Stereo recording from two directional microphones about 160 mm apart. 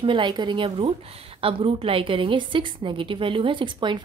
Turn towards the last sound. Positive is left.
turn(degrees=-30)  # may be behind; listen again after turning